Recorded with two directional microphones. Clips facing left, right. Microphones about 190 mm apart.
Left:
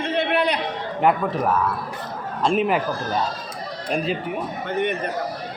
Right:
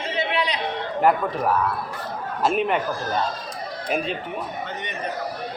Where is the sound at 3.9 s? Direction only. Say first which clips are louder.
Left 2 dB; centre (ahead or behind).